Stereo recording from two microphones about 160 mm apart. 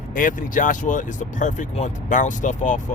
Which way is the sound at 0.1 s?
55° left (ahead or behind).